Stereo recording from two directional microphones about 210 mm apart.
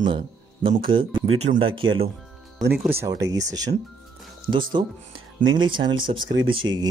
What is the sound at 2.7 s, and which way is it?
Speech, 10° right (ahead or behind).